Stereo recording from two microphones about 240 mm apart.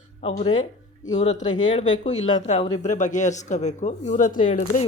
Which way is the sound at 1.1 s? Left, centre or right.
Left.